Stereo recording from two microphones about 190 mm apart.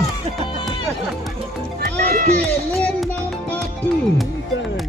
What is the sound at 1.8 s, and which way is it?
Music, 55° right (ahead or behind).